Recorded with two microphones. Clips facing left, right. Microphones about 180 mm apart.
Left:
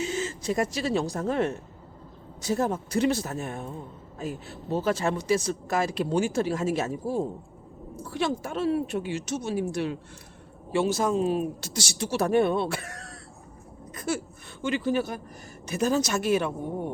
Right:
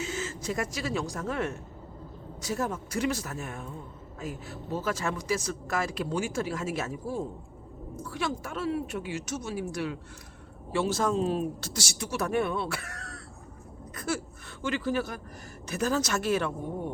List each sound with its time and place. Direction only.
0.0 s a sound: 25° left (ahead or behind)
1.1 s speech: 35° left (ahead or behind)
10.7 s speech: 15° left (ahead or behind)
11.8 s speech: 30° left (ahead or behind)
13.9 s a sound: 15° left (ahead or behind)
14.6 s speech: 20° left (ahead or behind)